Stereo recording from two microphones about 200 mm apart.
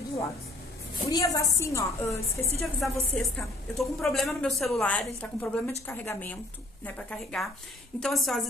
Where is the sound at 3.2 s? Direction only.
Centre (ahead or behind).